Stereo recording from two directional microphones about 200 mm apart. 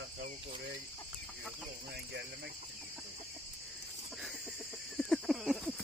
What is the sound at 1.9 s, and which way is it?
Cricket, 55° right (ahead or behind).